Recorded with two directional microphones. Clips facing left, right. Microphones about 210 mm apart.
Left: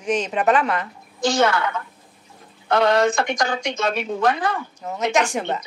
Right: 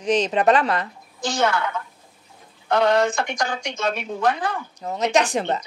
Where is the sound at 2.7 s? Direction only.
90° left.